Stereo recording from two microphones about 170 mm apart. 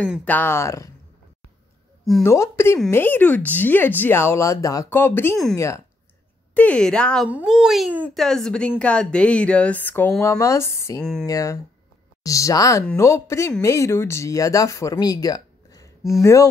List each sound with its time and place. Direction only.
0.2 s speech: 10° left (ahead or behind)
2.2 s speech: 15° left (ahead or behind)
6.5 s a woman's voice: 5° left (ahead or behind)
7.2 s speech: 5° right (ahead or behind); by 11.0 s 15° left (ahead or behind)
11.0 s a woman's voice: 5° left (ahead or behind)
11.2 s speech: 20° left (ahead or behind)